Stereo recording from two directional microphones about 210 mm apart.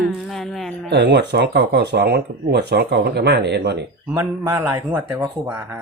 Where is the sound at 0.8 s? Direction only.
55° right (ahead or behind).